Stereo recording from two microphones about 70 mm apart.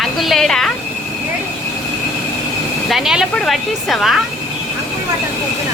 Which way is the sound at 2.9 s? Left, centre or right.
Centre.